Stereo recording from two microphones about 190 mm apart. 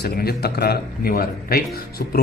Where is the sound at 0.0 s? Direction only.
55° left (ahead or behind).